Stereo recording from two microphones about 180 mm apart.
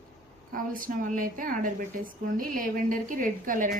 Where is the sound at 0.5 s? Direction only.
50° right (ahead or behind).